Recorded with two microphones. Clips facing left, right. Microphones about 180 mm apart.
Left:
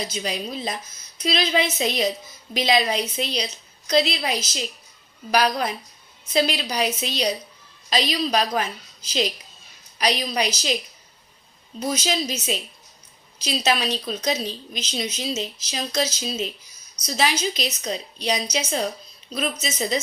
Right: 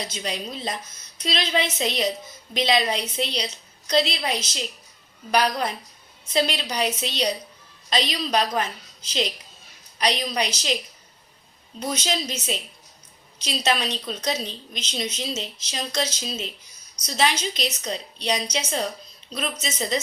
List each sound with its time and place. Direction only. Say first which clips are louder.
0.0 s a woman's voice: left 2 dB; 5° left (ahead or behind)
2.9 s a woman's voice: left 2 dB; 30° right (ahead or behind)
3.8 s a woman's voice: left 2 dB; 10° left (ahead or behind)
11.8 s a woman's voice: left 2 dB; 5° left (ahead or behind)
13.4 s a woman's voice: left 2 dB; 5° left (ahead or behind)